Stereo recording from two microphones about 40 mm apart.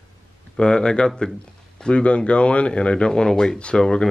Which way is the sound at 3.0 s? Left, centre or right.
Centre.